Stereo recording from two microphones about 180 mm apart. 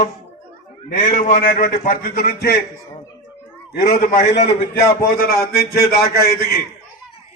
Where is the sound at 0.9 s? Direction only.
45° left (ahead or behind).